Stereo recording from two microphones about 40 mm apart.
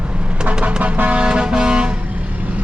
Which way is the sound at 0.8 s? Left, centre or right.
Right.